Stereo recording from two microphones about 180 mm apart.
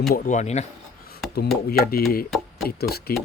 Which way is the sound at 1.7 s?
60° left (ahead or behind).